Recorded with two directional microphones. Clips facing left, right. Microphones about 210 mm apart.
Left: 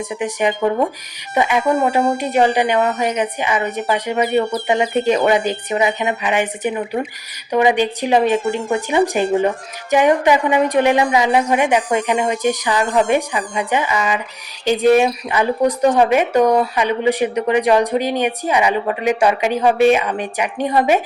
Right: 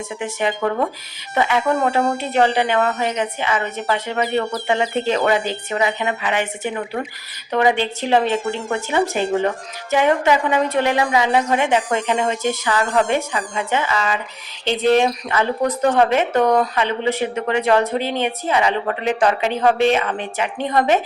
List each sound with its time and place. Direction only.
0.2 s speech: 15° left (ahead or behind)